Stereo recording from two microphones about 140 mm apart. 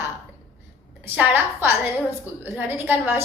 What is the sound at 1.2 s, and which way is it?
A woman's voice, 10° right (ahead or behind).